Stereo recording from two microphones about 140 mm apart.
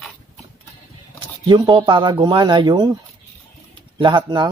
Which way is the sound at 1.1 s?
30° right (ahead or behind).